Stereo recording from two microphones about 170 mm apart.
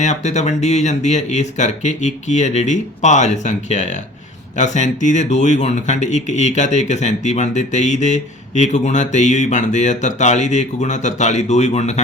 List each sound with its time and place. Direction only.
0.0 s speech: 45° left (ahead or behind)